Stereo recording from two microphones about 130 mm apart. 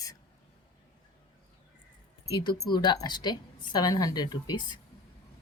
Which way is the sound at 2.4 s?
30° left (ahead or behind).